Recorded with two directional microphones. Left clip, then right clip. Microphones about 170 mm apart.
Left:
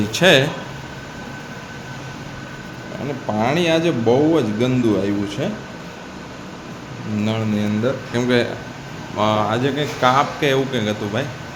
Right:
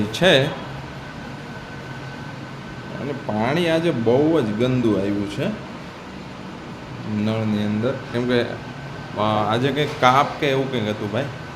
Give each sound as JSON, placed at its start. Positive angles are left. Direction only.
{"t": 0.1, "sound": "speech", "side_deg": 5}
{"t": 3.2, "sound": "speech", "side_deg": 5}
{"t": 7.3, "sound": "speech", "side_deg": 5}